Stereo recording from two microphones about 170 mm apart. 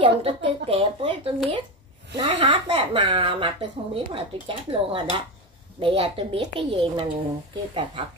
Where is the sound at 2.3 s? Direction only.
40° right (ahead or behind).